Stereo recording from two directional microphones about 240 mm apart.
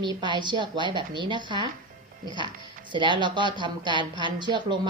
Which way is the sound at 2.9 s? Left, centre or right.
Centre.